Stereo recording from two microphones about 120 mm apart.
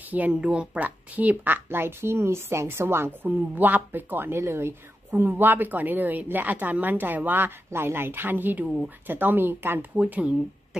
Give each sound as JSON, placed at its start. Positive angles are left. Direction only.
{"t": 0.0, "sound": "speech", "side_deg": -15}